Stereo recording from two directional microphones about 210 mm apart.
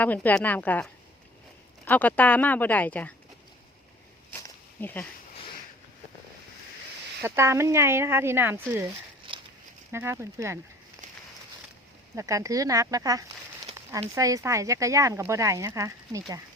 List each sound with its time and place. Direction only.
0.0 s speech: 10° left (ahead or behind)
4.3 s a sound: 10° left (ahead or behind)
7.2 s speech: 10° right (ahead or behind)
9.9 s speech: 10° right (ahead or behind)
12.1 s speech: 15° right (ahead or behind)